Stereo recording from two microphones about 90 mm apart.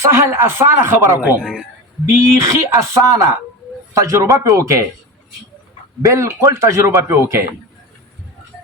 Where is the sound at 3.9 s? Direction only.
35° right (ahead or behind).